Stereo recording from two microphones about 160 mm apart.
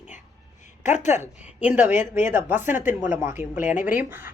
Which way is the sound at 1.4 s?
10° right (ahead or behind).